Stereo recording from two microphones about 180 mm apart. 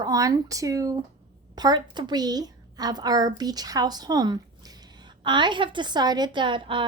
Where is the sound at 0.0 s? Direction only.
20° right (ahead or behind).